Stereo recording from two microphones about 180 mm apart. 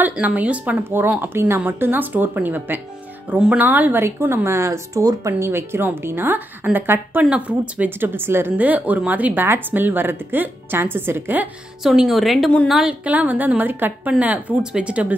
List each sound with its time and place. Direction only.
0.0 s a woman's voice: 10° right (ahead or behind)